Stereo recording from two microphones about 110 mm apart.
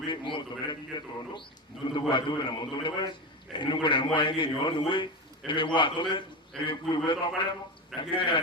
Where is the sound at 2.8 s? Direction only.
45° left (ahead or behind).